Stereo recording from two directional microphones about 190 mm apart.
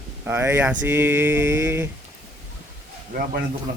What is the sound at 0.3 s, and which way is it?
Speech, 15° right (ahead or behind).